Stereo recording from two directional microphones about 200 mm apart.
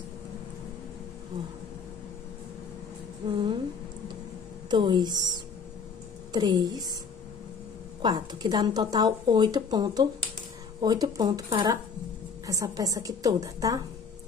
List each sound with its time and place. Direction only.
3.3 s speech: 25° right (ahead or behind)
4.6 s speech: 20° right (ahead or behind)
8.0 s a woman's voice: 20° right (ahead or behind)